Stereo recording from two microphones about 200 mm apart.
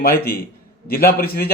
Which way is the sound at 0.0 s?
50° left (ahead or behind).